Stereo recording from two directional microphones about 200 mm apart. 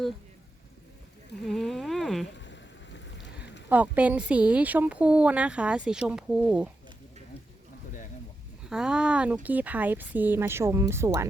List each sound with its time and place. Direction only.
1.5 s speech: centre (ahead or behind)
2.4 s boat: 65° left (ahead or behind)
3.7 s speech: 5° right (ahead or behind)
8.6 s speech: 5° right (ahead or behind)